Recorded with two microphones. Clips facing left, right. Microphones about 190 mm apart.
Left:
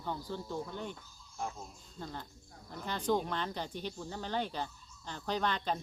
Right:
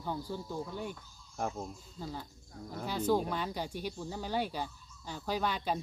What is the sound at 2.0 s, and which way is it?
Speech, 5° right (ahead or behind).